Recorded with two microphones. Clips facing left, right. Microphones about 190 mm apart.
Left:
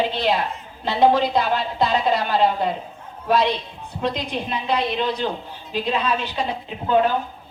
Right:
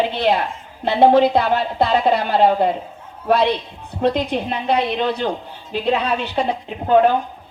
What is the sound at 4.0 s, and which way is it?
A woman's voice, 55° right (ahead or behind).